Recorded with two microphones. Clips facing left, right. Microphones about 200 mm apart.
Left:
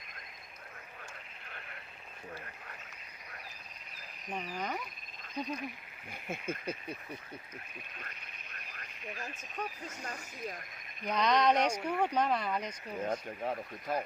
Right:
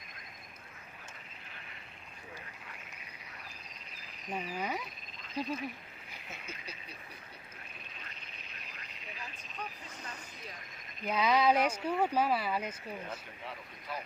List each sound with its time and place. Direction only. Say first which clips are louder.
4.4 s speech: right 1 dB; 10° right (ahead or behind)
6.1 s speech: left 10 dB; 50° left (ahead or behind)
7.9 s frog: left 1 dB; 50° left (ahead or behind)
11.0 s speech: even; 5° right (ahead or behind)
13.1 s speech: left 9 dB; 45° left (ahead or behind)